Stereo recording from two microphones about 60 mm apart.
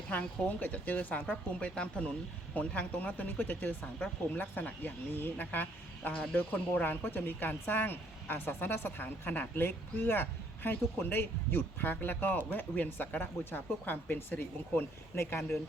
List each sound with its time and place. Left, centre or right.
0.1 s speech: left